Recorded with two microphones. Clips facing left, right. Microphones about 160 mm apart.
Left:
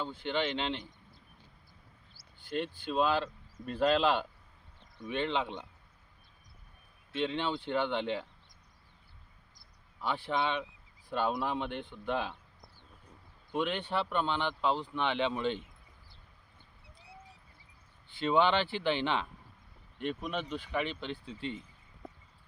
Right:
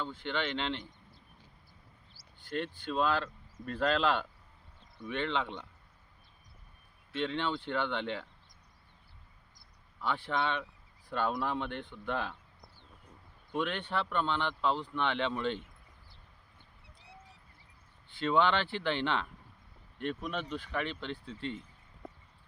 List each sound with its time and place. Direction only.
0.0 s speech: 15° left (ahead or behind)
2.4 s speech: 10° left (ahead or behind)
7.2 s speech: 15° left (ahead or behind)
10.2 s speech: 15° left (ahead or behind)
13.6 s speech: 10° left (ahead or behind)
18.2 s speech: 10° left (ahead or behind)